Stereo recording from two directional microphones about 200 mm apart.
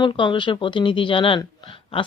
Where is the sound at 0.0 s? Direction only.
25° left (ahead or behind).